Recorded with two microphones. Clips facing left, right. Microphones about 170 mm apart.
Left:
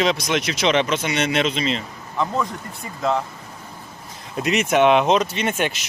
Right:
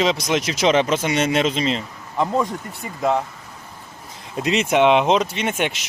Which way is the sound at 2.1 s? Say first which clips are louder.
Right 3 dB; 20° right (ahead or behind).